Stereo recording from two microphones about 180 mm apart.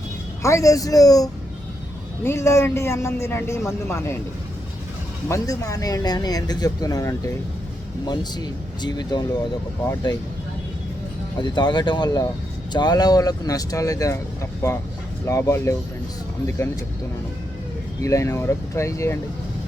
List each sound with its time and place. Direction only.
0.4 s speech: 15° left (ahead or behind)
5.3 s speech: 20° left (ahead or behind)
11.3 s speech: 25° left (ahead or behind)
15.3 s speech: 15° left (ahead or behind)
18.0 s speech: 15° left (ahead or behind)